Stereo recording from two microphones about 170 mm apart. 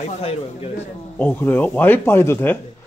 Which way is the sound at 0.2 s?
35° left (ahead or behind).